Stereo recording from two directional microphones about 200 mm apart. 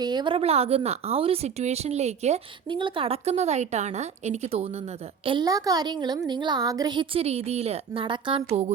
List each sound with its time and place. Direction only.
0.0 s a woman's voice: 20° right (ahead or behind)